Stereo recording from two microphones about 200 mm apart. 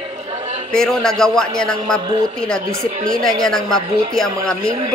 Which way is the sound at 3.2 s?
Centre (ahead or behind).